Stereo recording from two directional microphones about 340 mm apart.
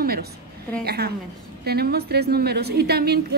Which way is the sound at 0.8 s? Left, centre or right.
Right.